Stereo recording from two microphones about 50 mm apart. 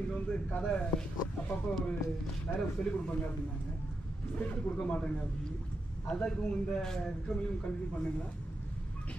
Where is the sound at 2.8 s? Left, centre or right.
Centre.